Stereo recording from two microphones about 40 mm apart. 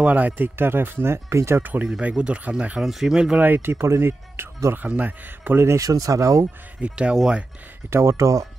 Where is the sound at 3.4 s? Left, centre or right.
Right.